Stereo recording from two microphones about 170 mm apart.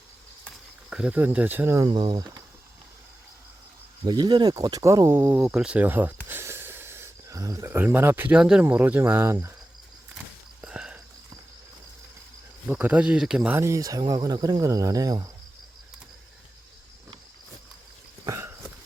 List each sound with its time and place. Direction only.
0.9 s speech: 5° right (ahead or behind)
1.9 s speech: 25° right (ahead or behind)
4.0 s speech: 25° right (ahead or behind)
10.6 s a sound: 5° right (ahead or behind)
12.6 s speech: 5° right (ahead or behind)
18.3 s a sound: 15° right (ahead or behind)